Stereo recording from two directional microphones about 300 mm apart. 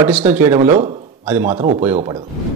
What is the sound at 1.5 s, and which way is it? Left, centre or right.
Speech, right.